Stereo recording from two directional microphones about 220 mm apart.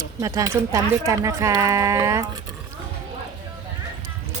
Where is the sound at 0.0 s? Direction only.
15° right (ahead or behind).